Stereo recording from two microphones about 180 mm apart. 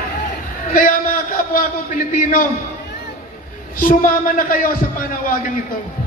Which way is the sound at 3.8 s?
50° left (ahead or behind).